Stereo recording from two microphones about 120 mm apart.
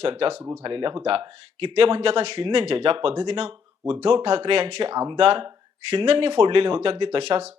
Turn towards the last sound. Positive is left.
turn(degrees=-50)  # may be behind; listen again after turning